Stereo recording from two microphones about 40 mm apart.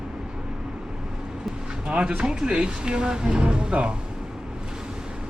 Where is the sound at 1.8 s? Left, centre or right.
Right.